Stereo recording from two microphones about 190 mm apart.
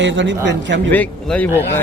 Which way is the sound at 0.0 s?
70° right (ahead or behind).